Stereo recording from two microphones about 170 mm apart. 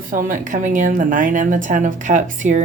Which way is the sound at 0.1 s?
50° right (ahead or behind).